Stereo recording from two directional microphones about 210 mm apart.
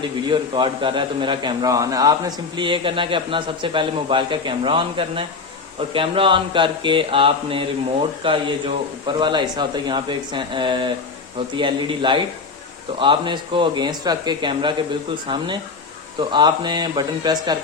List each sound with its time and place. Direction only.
0.3 s a man's voice: 25° right (ahead or behind)